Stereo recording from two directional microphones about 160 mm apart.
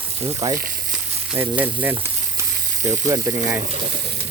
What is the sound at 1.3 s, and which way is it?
Speech, 10° right (ahead or behind).